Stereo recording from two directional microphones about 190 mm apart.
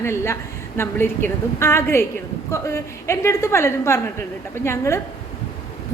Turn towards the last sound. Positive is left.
turn(degrees=15)  # may be behind; listen again after turning